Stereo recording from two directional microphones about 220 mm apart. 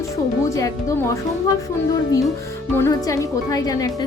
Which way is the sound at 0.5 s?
15° left (ahead or behind).